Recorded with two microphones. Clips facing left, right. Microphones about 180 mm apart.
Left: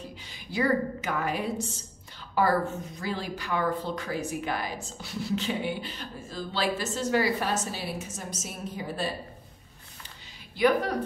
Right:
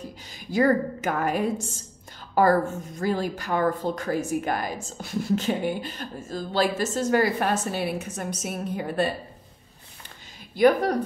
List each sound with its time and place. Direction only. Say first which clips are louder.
0.3 s a woman's voice: right 5 dB; 45° right (ahead or behind)
10.5 s a woman's voice: right 5 dB; 45° right (ahead or behind)